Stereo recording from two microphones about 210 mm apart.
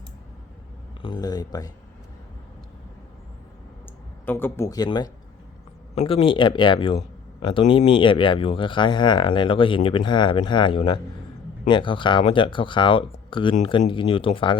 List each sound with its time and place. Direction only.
1.0 s speech: 20° left (ahead or behind)
4.3 s speech: 10° left (ahead or behind)